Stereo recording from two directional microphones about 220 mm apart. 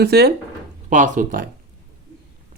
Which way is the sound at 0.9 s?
35° right (ahead or behind).